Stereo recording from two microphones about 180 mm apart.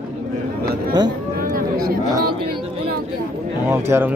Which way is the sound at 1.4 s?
55° right (ahead or behind).